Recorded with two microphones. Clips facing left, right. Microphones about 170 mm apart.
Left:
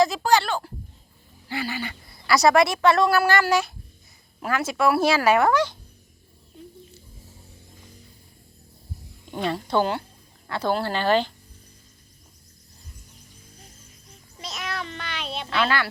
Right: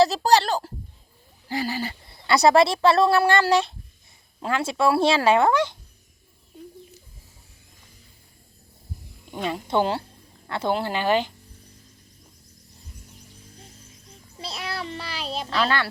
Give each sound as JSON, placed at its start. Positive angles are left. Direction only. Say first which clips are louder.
{"t": 0.0, "sound": "speech", "louder": "right 2 dB", "side_deg": -35}
{"t": 9.3, "sound": "speech", "louder": "left 2 dB", "side_deg": -5}
{"t": 9.6, "sound": "speech", "louder": "right 2 dB", "side_deg": -25}
{"t": 14.3, "sound": "speech", "louder": "even", "side_deg": -30}